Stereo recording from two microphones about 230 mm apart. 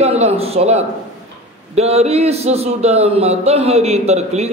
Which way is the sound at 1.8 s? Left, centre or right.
Right.